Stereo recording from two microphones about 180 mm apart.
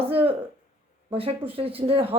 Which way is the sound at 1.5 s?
30° right (ahead or behind).